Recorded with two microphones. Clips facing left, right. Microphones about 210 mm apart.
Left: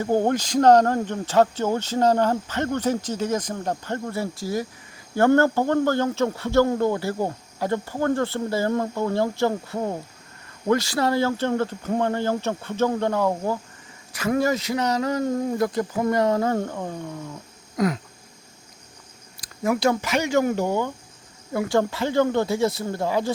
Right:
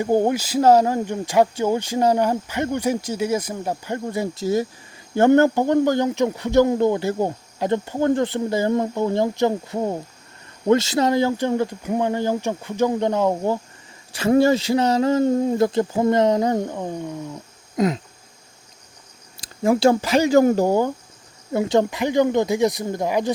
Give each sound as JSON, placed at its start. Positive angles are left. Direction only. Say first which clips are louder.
{"t": 0.0, "sound": "speech", "louder": "right 2 dB", "side_deg": -15}
{"t": 17.7, "sound": "a sound", "louder": "right 3 dB", "side_deg": -20}
{"t": 19.4, "sound": "speech", "louder": "right 5 dB", "side_deg": -30}
{"t": 21.5, "sound": "speech", "louder": "right 3 dB", "side_deg": -20}